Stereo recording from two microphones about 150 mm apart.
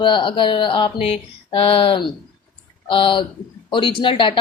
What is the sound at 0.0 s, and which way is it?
Speech, 35° left (ahead or behind).